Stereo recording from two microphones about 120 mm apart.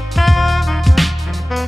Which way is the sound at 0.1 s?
Centre (ahead or behind).